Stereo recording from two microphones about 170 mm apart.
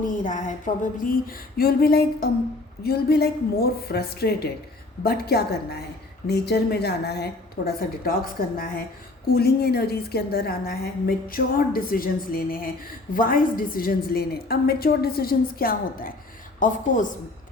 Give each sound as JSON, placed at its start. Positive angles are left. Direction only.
{"t": 0.0, "sound": "a woman's voice", "side_deg": 50}
{"t": 9.3, "sound": "a woman's voice", "side_deg": 70}